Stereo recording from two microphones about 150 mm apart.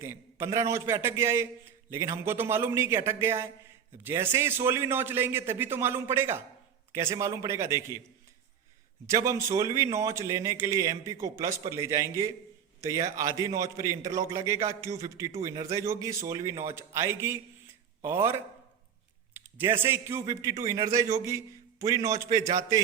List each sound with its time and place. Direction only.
0.0 s a man's voice: 15° right (ahead or behind)
9.0 s a man's voice: 20° right (ahead or behind)